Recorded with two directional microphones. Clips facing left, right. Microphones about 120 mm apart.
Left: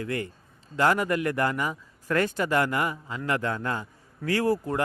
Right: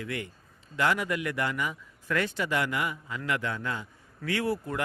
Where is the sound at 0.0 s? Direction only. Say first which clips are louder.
Left 5 dB; 40° left (ahead or behind).